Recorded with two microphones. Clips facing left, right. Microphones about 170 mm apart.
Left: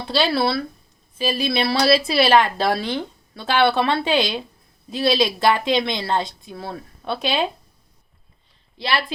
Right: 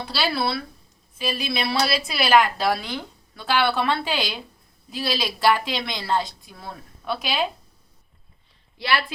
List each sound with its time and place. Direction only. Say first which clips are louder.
0.0 s a woman's voice: left 5 dB; 25° left (ahead or behind)
8.8 s a woman's voice: left 1 dB; 30° left (ahead or behind)